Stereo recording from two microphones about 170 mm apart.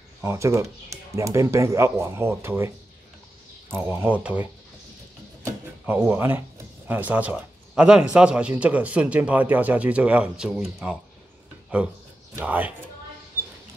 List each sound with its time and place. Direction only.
0.2 s speech: 15° right (ahead or behind)
3.7 s speech: 10° right (ahead or behind)
5.4 s drawer open or close: 10° right (ahead or behind)
6.9 s speech: 10° right (ahead or behind)